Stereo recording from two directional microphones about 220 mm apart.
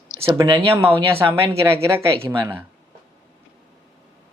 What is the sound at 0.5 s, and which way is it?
Speech, 10° right (ahead or behind).